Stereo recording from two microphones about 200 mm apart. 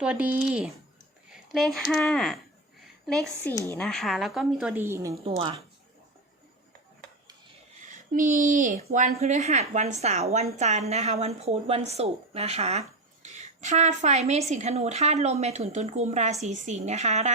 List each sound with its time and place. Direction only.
0.0 s a woman's voice: 5° right (ahead or behind)
5.2 s speech: 25° right (ahead or behind)
7.9 s a woman's voice: 40° right (ahead or behind)